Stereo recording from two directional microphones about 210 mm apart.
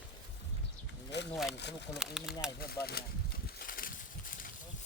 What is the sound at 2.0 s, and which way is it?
Speech, centre (ahead or behind).